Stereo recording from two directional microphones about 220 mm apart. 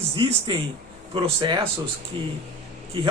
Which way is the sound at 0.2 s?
25° right (ahead or behind).